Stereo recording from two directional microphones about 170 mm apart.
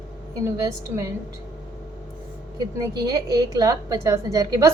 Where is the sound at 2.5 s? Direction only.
25° right (ahead or behind).